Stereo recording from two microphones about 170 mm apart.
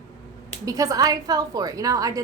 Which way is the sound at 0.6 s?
20° right (ahead or behind).